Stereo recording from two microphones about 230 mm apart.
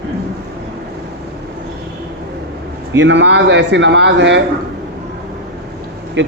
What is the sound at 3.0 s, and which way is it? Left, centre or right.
A man's voice, right.